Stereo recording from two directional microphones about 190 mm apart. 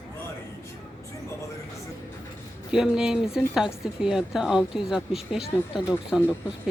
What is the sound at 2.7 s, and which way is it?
Speech, 5° right (ahead or behind).